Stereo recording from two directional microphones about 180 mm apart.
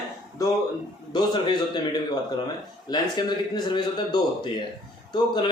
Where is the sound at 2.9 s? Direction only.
25° left (ahead or behind).